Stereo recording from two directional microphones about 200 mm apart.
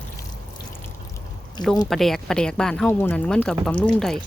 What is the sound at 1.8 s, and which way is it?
Speech, centre (ahead or behind).